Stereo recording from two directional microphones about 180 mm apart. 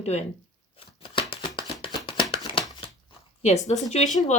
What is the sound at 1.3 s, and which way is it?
Shuffling cards, 30° left (ahead or behind).